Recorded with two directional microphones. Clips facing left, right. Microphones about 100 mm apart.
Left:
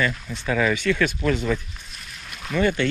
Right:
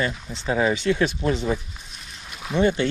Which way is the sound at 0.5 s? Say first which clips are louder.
Right 1 dB; 25° right (ahead or behind).